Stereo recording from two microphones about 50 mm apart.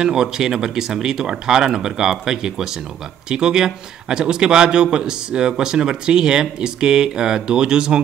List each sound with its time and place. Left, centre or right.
0.0 s a man's voice: centre